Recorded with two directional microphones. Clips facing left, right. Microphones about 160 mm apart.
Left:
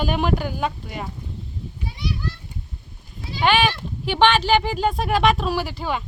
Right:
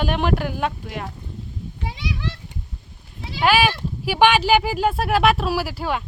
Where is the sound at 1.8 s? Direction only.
90° right.